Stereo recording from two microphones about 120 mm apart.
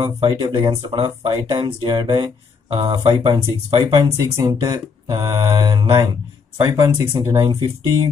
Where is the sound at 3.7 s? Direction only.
50° right (ahead or behind).